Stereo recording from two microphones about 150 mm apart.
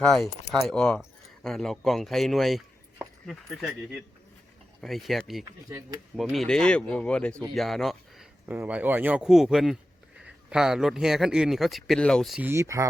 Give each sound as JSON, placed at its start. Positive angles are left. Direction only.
{"t": 0.0, "sound": "speech", "side_deg": 5}
{"t": 8.4, "sound": "speech", "side_deg": -10}
{"t": 12.4, "sound": "speech", "side_deg": -15}